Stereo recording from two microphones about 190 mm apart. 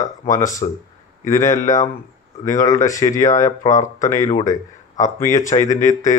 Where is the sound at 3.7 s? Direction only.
40° left (ahead or behind).